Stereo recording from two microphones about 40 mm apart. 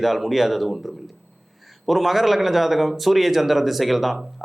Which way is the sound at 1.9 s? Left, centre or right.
Centre.